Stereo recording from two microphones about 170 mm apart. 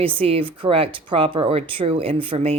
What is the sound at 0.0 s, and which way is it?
Speech, 35° right (ahead or behind).